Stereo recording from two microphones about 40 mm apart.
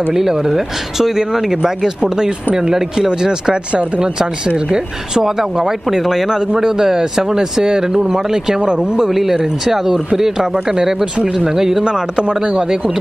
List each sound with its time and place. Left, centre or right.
0.1 s speech: centre
4.6 s speech: centre
6.4 s speech: centre
9.1 s speech: centre
11.8 s speech: right